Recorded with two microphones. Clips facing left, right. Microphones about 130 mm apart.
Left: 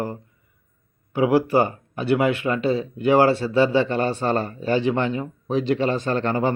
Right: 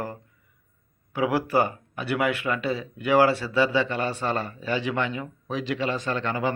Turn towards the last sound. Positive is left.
turn(degrees=35)  # may be behind; listen again after turning